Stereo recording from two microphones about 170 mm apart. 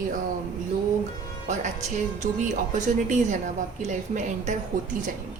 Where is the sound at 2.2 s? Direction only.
45° right (ahead or behind).